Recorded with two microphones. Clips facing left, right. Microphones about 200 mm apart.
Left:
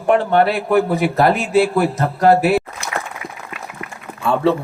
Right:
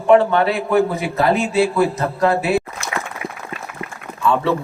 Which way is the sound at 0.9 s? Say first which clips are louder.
Left 4 dB; 70° left (ahead or behind).